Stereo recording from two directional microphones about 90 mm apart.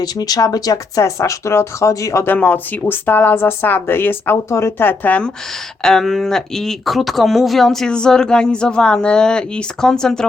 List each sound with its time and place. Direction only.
0.0 s speech: 45° left (ahead or behind)
2.2 s speech: 20° left (ahead or behind)
5.8 s speech: 5° left (ahead or behind)